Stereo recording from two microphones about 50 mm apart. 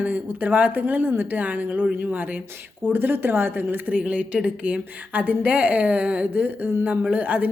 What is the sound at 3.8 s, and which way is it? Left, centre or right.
A woman's voice, right.